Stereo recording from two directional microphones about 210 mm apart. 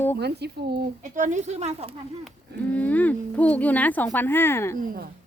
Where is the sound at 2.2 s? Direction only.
5° left (ahead or behind).